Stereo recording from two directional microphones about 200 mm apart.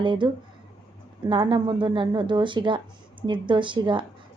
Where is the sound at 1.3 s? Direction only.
25° right (ahead or behind).